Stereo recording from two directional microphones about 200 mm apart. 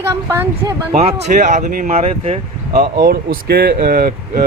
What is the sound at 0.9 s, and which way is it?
Speech, 35° right (ahead or behind).